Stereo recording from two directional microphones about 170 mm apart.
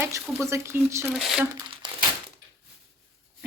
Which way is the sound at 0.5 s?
15° right (ahead or behind).